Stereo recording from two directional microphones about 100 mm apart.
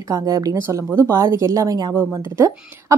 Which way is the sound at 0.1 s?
35° right (ahead or behind).